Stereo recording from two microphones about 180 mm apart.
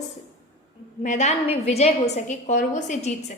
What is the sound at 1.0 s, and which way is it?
A woman's voice, 40° left (ahead or behind).